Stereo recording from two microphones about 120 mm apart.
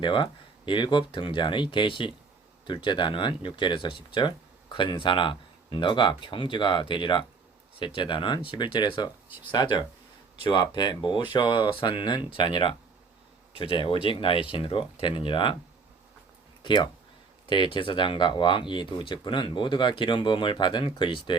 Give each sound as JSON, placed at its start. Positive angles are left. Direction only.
{"t": 0.0, "sound": "speech", "side_deg": 40}
{"t": 16.6, "sound": "speech", "side_deg": 40}